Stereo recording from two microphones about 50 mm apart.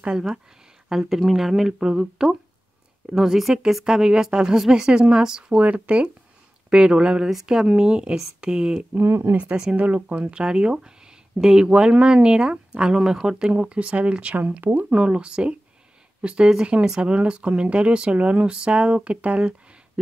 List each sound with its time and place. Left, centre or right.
0.0 s a woman's voice: centre
5.6 s a woman's voice: right
8.9 s speech: right
9.8 s speech: right
14.3 s speech: right
14.9 s speech: right